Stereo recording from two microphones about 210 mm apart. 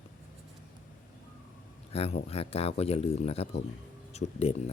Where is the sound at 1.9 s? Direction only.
30° left (ahead or behind).